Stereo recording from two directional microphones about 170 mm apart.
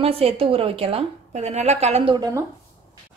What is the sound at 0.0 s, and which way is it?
A woman's voice, 35° right (ahead or behind).